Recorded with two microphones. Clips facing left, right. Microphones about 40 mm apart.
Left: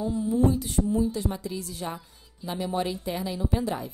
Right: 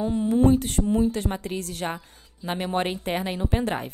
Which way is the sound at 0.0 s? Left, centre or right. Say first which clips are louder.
Right 3 dB; right.